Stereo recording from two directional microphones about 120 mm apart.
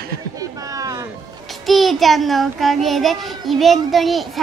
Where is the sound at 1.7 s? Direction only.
Centre (ahead or behind).